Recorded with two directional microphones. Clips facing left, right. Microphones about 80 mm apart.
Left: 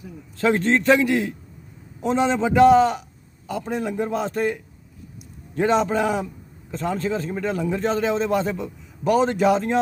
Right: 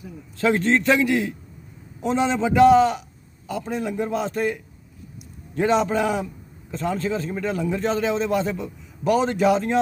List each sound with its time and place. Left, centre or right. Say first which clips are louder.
0.3 s a man's voice: even; left
5.5 s a man's voice: even; left